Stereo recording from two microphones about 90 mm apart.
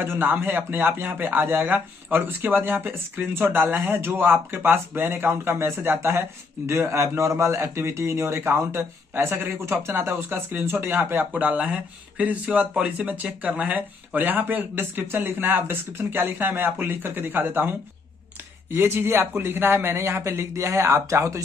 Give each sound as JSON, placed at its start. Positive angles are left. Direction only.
{"t": 0.0, "sound": "speech", "side_deg": -20}